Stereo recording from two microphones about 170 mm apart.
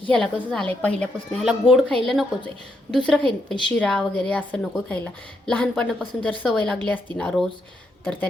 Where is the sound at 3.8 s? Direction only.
5° left (ahead or behind).